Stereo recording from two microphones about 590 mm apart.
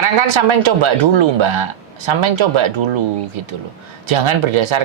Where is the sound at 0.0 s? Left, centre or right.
Right.